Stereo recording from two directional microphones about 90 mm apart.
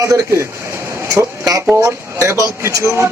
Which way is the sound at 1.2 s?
40° right (ahead or behind).